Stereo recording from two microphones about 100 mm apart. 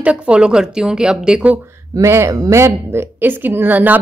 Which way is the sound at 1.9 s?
30° right (ahead or behind).